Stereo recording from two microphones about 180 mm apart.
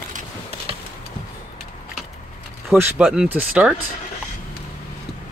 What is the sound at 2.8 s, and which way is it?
Speech, 5° right (ahead or behind).